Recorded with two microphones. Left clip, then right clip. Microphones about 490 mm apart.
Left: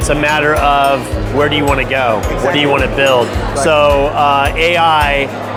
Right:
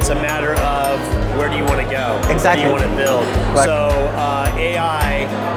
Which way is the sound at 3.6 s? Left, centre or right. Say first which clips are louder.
Left 5 dB; left.